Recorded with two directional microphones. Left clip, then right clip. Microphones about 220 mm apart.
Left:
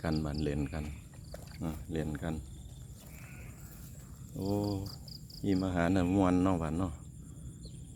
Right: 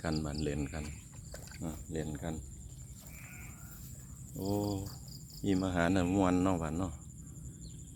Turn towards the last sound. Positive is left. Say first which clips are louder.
# left 1 dB
turn(degrees=10)  # may be behind; listen again after turning